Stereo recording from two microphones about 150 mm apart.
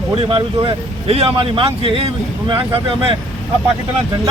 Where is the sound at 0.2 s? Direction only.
35° right (ahead or behind).